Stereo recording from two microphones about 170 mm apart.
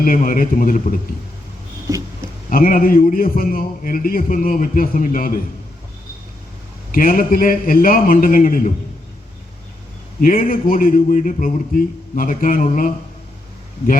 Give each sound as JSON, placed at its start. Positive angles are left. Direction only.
{"t": 0.0, "sound": "a man's voice", "side_deg": 55}
{"t": 1.9, "sound": "speech", "side_deg": -20}
{"t": 2.5, "sound": "a man's voice", "side_deg": 55}
{"t": 6.9, "sound": "a man's voice", "side_deg": 55}
{"t": 10.2, "sound": "a man's voice", "side_deg": 50}